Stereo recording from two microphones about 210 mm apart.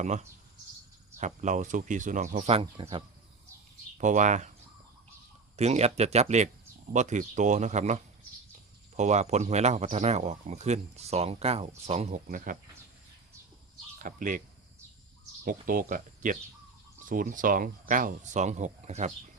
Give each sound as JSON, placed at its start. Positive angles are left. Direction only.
{"t": 0.0, "sound": "speech", "side_deg": -35}
{"t": 3.9, "sound": "speech", "side_deg": -35}
{"t": 5.5, "sound": "speech", "side_deg": -30}
{"t": 14.0, "sound": "speech", "side_deg": -40}
{"t": 15.4, "sound": "speech", "side_deg": -40}